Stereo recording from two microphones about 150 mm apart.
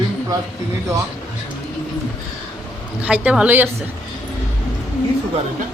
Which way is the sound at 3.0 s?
10° right (ahead or behind).